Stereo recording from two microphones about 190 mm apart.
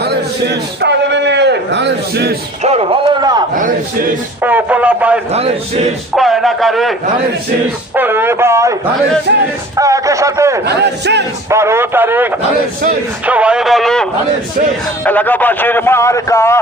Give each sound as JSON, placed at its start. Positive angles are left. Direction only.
{"t": 0.0, "sound": "a man's voice", "side_deg": -60}
{"t": 2.6, "sound": "a man's voice", "side_deg": -30}
{"t": 3.5, "sound": "speech", "side_deg": -45}
{"t": 4.4, "sound": "speech", "side_deg": -10}
{"t": 5.3, "sound": "a man's voice", "side_deg": -30}
{"t": 6.1, "sound": "speech", "side_deg": 0}
{"t": 7.9, "sound": "speech", "side_deg": -10}
{"t": 9.7, "sound": "speech", "side_deg": -15}
{"t": 10.7, "sound": "speech", "side_deg": -65}
{"t": 11.5, "sound": "a man's voice", "side_deg": -15}